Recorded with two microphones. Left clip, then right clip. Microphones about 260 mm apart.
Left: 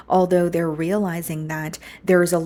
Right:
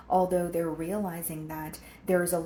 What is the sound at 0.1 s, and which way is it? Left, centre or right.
Speech, left.